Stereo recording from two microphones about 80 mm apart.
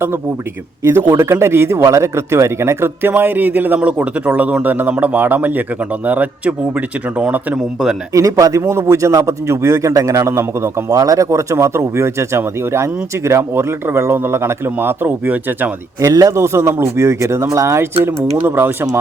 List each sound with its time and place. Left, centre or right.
1.1 s speech: right; by 7.6 s centre
8.1 s speech: right
10.8 s speech: right
16.0 s speech: right